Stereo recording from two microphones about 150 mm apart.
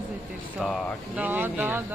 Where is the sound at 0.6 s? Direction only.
Centre (ahead or behind).